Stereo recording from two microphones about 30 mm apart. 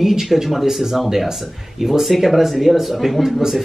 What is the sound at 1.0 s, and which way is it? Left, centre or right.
Speech, centre.